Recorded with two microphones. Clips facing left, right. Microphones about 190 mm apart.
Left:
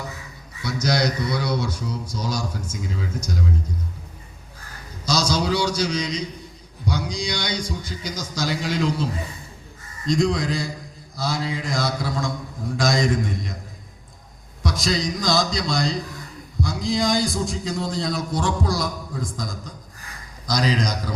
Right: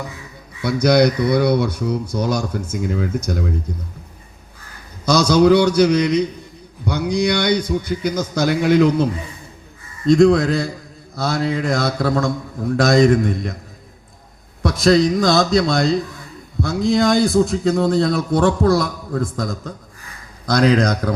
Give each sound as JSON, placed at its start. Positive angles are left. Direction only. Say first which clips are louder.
{"t": 0.6, "sound": "a man's voice", "louder": "right 9 dB", "side_deg": -60}
{"t": 5.0, "sound": "a man's voice", "louder": "right 10 dB", "side_deg": -60}
{"t": 10.1, "sound": "a man's voice", "louder": "right 9 dB", "side_deg": -60}
{"t": 14.6, "sound": "a man's voice", "louder": "right 10 dB", "side_deg": -60}